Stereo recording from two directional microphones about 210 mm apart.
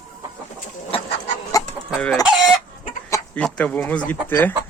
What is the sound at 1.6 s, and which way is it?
Chicken, 15° left (ahead or behind).